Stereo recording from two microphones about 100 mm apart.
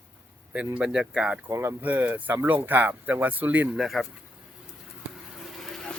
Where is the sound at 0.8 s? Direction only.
10° right (ahead or behind).